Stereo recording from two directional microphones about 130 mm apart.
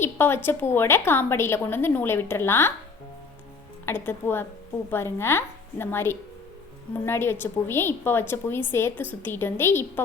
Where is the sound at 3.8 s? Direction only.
15° left (ahead or behind).